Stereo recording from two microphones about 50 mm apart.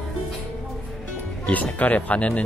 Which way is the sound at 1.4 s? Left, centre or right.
Left.